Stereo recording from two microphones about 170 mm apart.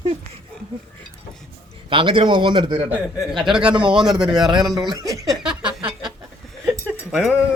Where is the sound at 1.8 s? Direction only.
30° right (ahead or behind).